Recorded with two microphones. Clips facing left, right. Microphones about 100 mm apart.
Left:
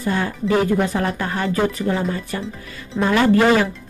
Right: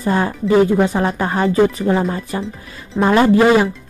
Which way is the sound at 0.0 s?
35° right (ahead or behind).